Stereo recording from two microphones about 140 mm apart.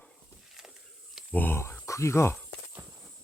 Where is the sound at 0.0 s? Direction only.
Centre (ahead or behind).